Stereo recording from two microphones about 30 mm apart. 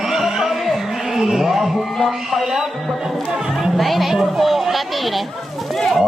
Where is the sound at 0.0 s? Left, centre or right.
Centre.